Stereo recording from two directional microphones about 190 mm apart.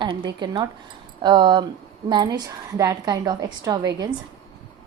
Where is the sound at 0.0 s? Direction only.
25° right (ahead or behind).